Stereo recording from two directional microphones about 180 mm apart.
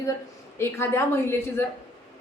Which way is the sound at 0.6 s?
15° left (ahead or behind).